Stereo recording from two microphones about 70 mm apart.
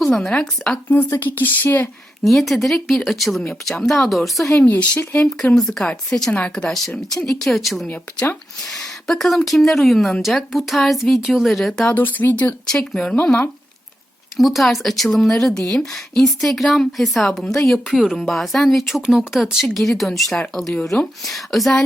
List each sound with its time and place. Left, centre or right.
0.0 s speech: centre
0.9 s speech: left
2.2 s speech: centre
4.5 s speech: left
5.5 s speech: centre
7.9 s speech: left
8.6 s speech: centre
11.9 s speech: left
12.6 s speech: centre
14.3 s speech: centre